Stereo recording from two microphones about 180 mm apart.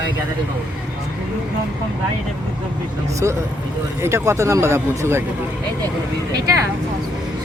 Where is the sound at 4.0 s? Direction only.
15° right (ahead or behind).